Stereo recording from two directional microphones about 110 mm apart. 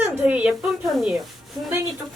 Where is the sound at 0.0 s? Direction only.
15° right (ahead or behind).